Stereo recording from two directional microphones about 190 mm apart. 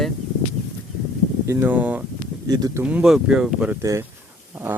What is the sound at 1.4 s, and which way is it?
Speech, 15° right (ahead or behind).